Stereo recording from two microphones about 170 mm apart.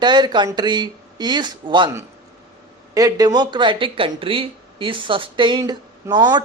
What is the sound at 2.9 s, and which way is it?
A man's voice, 20° right (ahead or behind).